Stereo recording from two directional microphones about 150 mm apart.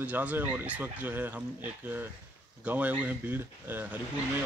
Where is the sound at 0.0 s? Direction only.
10° right (ahead or behind).